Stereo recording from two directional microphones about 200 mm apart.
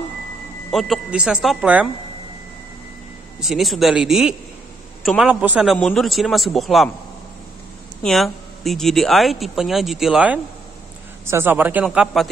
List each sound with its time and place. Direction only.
0.7 s speech: centre (ahead or behind)
3.3 s speech: centre (ahead or behind)
8.0 s a man's voice: centre (ahead or behind)